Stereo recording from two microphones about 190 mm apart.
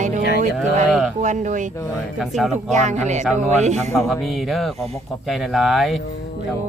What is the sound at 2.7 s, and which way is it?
Speech, 40° right (ahead or behind).